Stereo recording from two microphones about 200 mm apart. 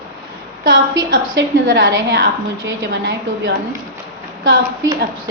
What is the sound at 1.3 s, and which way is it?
A woman's voice, 65° right (ahead or behind).